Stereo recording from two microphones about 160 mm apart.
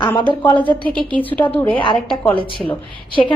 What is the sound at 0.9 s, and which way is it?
Speech, 30° right (ahead or behind).